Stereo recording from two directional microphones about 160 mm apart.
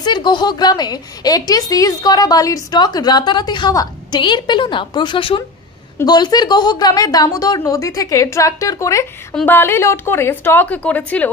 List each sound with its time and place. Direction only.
0.0 s a woman's voice: 30° left (ahead or behind)
9.3 s a woman's voice: 10° left (ahead or behind)